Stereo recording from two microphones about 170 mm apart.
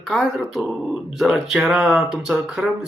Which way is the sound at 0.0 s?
Centre (ahead or behind).